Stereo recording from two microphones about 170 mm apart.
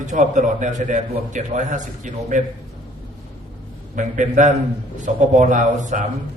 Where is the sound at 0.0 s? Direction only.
45° right (ahead or behind).